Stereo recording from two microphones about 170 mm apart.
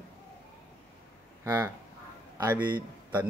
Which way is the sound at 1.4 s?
15° right (ahead or behind).